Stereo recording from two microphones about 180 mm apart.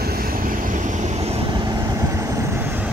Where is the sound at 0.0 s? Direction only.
55° right (ahead or behind); by 1.4 s 40° right (ahead or behind).